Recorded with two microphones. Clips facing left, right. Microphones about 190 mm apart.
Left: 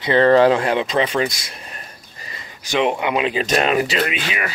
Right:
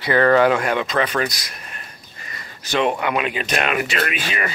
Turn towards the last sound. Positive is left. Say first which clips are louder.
# left 3 dB
turn(degrees=25)  # may be behind; listen again after turning